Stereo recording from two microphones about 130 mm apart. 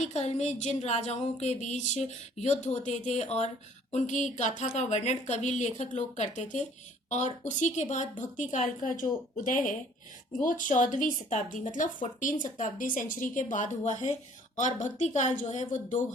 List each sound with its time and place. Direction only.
0.0 s a woman's voice: 60° left (ahead or behind)
8.8 s a woman's voice: 85° left; by 16.0 s 65° left (ahead or behind)